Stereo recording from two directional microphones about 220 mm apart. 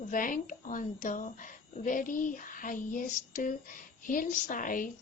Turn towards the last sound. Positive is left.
turn(degrees=40)  # may be behind; listen again after turning